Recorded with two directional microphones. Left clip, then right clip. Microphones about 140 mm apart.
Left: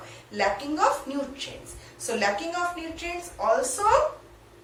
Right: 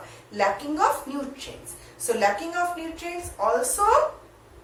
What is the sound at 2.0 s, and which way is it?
A woman's voice, 20° right (ahead or behind).